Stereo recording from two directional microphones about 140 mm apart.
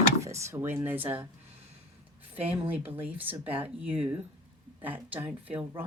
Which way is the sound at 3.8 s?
40° right (ahead or behind).